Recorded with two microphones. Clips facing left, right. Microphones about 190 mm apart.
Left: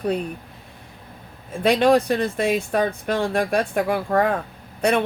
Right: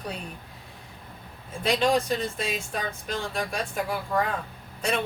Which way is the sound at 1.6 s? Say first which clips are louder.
Left 7 dB; 60° left (ahead or behind).